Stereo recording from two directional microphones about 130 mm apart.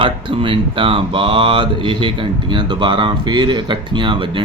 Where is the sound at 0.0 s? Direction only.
40° right (ahead or behind).